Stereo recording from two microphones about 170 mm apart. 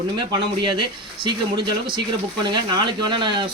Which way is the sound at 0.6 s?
30° right (ahead or behind).